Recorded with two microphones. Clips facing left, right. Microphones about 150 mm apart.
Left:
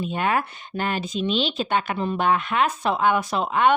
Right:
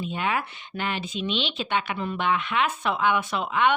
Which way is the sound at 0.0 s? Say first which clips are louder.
Left 4 dB; 45° left (ahead or behind).